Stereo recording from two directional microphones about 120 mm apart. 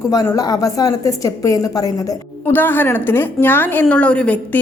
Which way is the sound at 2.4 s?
15° left (ahead or behind).